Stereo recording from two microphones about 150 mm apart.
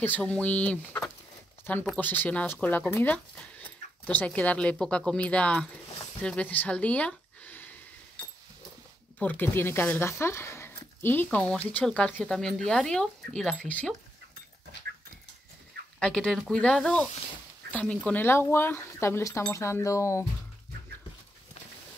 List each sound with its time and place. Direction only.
0.0 s speech: 10° left (ahead or behind)
9.2 s speech: 15° left (ahead or behind)
16.0 s speech: 5° left (ahead or behind); by 20.2 s 20° left (ahead or behind)